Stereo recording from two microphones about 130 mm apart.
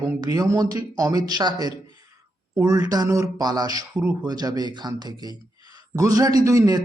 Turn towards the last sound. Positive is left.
turn(degrees=-25)  # may be behind; listen again after turning